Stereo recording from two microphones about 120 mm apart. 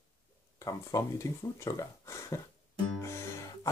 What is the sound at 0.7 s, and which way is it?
Speech, 25° left (ahead or behind).